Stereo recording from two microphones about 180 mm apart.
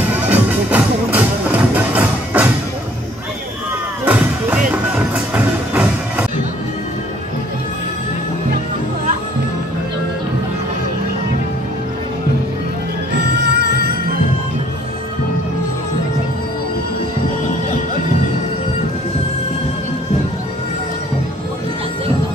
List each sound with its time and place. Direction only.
0.1 s music: 10° right (ahead or behind)
4.0 s music: 10° right (ahead or behind)
13.4 s music: 65° right (ahead or behind)